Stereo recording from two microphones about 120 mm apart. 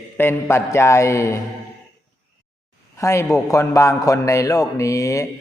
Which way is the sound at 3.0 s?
25° left (ahead or behind).